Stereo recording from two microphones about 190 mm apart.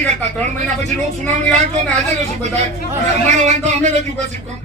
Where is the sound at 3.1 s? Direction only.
40° right (ahead or behind).